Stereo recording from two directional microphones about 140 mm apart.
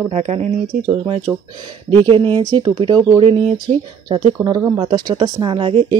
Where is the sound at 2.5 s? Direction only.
40° right (ahead or behind).